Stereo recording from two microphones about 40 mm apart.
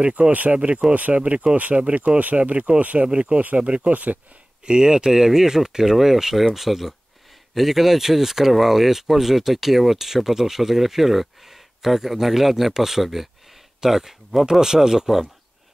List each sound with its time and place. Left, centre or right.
0.3 s speech: right
0.6 s speech: right
0.9 s speech: right
1.2 s speech: right
3.1 s speech: right
4.6 s speech: centre